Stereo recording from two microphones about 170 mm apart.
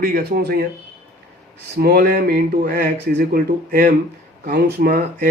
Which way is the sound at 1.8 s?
65° right (ahead or behind).